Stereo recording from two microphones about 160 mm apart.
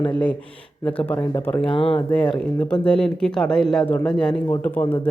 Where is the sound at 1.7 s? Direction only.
35° left (ahead or behind).